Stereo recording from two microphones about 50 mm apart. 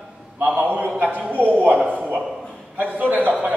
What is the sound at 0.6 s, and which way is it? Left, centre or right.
A man's voice, right.